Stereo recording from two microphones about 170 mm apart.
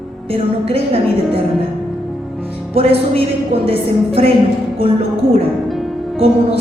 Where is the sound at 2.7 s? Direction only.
35° right (ahead or behind).